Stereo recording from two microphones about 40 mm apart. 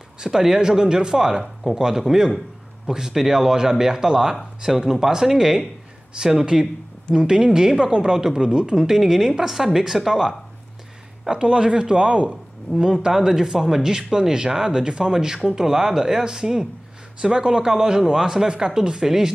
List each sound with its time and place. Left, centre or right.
0.2 s speech: centre
1.4 s speech: centre
1.8 s speech: centre
11.2 s speech: centre
12.3 s speech: centre